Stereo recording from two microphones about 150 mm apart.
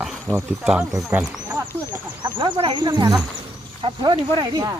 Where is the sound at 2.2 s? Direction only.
30° right (ahead or behind).